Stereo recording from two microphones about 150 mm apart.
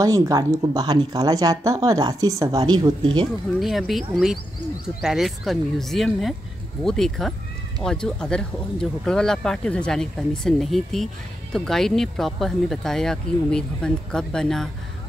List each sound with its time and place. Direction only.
0.0 s speech: 25° right (ahead or behind)
3.5 s speech: centre (ahead or behind)